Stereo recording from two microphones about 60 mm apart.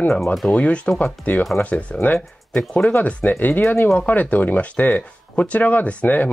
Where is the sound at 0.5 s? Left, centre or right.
Centre.